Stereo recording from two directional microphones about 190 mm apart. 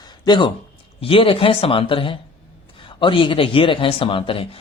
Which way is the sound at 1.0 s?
30° left (ahead or behind).